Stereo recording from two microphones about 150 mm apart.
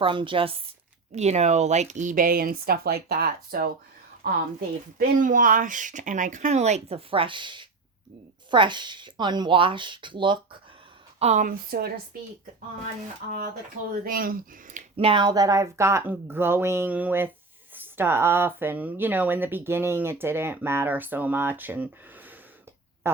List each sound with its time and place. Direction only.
0.0 s speech: 35° right (ahead or behind)
1.1 s speech: 45° right (ahead or behind); by 3.7 s 85° right
4.9 s speech: 65° right (ahead or behind); by 10.6 s 35° right (ahead or behind)
11.2 s speech: 45° right (ahead or behind)
11.4 s speech: 75° right (ahead or behind)
13.9 s speech: 75° right (ahead or behind)
14.9 s speech: 35° right (ahead or behind); by 22.4 s 10° right (ahead or behind)
23.1 s a sound: 15° right (ahead or behind)